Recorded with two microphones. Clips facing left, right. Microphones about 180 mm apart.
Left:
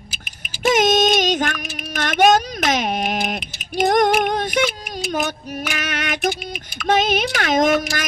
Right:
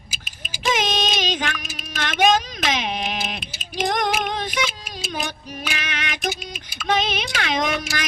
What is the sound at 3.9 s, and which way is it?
Female singing, 50° left (ahead or behind).